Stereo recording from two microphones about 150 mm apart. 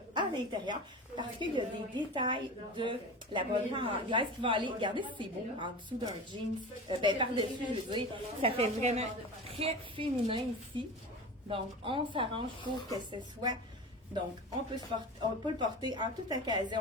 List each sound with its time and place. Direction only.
0.1 s a woman's voice: 30° right (ahead or behind)